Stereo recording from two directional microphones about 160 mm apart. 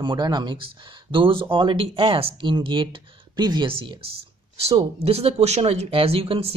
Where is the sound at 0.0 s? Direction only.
25° right (ahead or behind).